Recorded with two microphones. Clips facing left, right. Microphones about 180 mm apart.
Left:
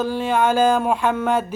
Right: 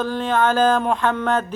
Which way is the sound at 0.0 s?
10° left (ahead or behind).